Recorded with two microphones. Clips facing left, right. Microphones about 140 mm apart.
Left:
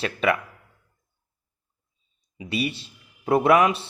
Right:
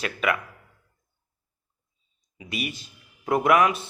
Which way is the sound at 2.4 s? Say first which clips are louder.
Left 5 dB; 30° left (ahead or behind).